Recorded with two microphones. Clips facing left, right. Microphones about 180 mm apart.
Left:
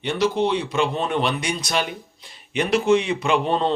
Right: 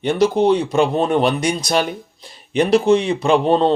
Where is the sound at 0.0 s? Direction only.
45° right (ahead or behind).